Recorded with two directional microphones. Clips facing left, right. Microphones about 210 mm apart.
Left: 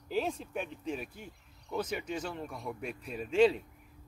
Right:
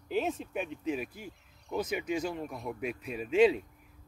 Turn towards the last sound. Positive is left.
turn(degrees=-5)  # may be behind; listen again after turning